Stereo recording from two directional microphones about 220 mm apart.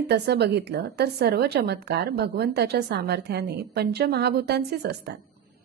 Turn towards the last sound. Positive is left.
turn(degrees=-50)  # may be behind; listen again after turning